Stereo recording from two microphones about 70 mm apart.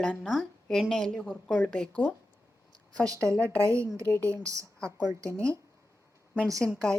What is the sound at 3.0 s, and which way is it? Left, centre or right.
Speech, right.